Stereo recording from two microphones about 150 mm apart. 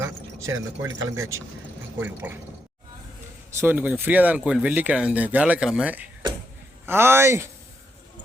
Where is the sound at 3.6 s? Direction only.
10° right (ahead or behind).